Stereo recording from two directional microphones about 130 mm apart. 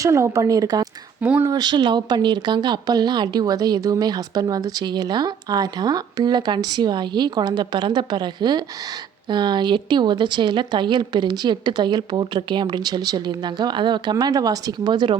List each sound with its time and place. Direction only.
0.0 s speech: 25° right (ahead or behind)
1.2 s speech: 15° right (ahead or behind)
1.5 s speech: 30° right (ahead or behind)